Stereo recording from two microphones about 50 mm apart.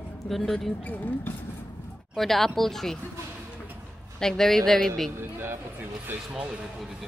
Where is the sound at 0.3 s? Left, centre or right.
Centre.